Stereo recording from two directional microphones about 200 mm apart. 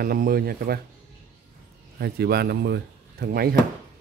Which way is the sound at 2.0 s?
55° right (ahead or behind).